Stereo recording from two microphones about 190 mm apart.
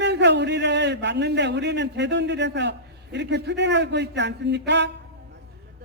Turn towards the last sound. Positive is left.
turn(degrees=-65)  # may be behind; listen again after turning